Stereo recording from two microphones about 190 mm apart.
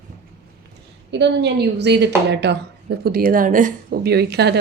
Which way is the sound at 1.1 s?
65° right (ahead or behind).